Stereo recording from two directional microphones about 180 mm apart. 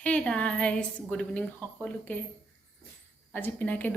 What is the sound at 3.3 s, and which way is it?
Speech, 10° left (ahead or behind).